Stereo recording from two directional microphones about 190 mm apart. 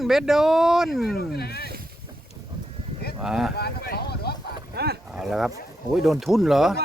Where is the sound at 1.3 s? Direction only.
55° left (ahead or behind).